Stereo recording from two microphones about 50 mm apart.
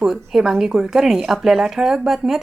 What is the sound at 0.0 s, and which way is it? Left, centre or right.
Speech, centre.